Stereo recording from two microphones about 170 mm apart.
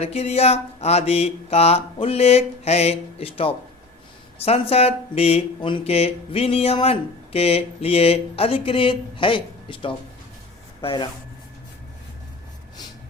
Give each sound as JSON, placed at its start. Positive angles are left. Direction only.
{"t": 0.0, "sound": "speech", "side_deg": 40}